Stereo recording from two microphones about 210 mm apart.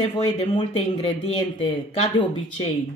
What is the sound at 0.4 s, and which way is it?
Speech, 30° left (ahead or behind).